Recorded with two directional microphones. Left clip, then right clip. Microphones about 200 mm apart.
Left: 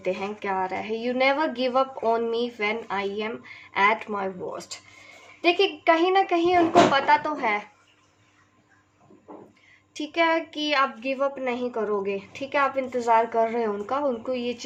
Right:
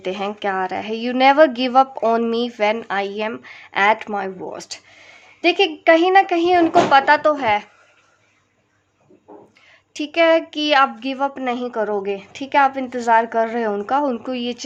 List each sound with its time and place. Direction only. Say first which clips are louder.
0.0 s a woman's voice: right 5 dB; 50° right (ahead or behind)
9.9 s a woman's voice: right 8 dB; 50° right (ahead or behind)